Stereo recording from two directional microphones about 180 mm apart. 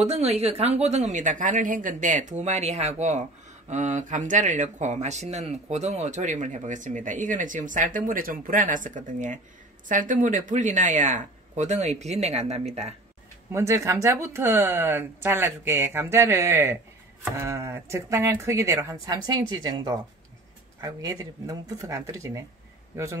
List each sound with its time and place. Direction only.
0.0 s speech: 35° right (ahead or behind)
13.5 s speech: 15° right (ahead or behind)